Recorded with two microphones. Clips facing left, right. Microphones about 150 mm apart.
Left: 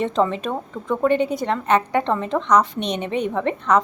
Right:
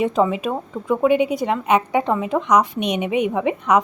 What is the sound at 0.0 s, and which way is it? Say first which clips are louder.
A woman's voice: right 2 dB; 10° right (ahead or behind).